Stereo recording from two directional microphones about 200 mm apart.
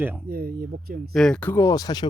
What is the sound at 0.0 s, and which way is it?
Speech, 10° right (ahead or behind).